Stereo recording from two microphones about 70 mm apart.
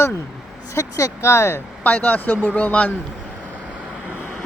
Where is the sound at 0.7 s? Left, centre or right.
Left.